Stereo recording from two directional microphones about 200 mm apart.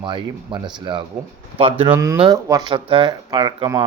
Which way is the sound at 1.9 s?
10° right (ahead or behind).